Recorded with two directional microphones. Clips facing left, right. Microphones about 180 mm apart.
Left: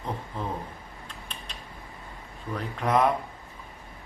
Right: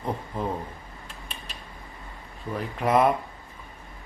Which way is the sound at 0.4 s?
10° right (ahead or behind).